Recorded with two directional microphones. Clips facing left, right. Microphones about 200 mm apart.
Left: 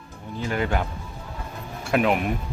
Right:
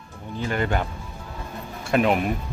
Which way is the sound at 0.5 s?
5° left (ahead or behind).